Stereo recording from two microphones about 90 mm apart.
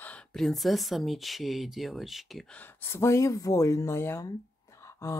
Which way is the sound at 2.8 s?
30° left (ahead or behind).